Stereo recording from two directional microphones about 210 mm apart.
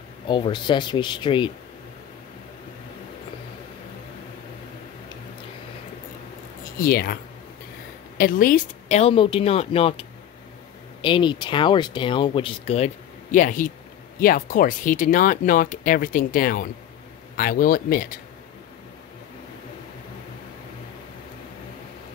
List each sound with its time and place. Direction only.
0.3 s speech: 20° left (ahead or behind)
6.8 s speech: 45° left (ahead or behind)
8.2 s speech: 40° left (ahead or behind)